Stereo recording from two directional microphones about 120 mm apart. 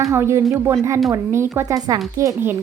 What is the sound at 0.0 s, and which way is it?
A woman's voice, 25° right (ahead or behind).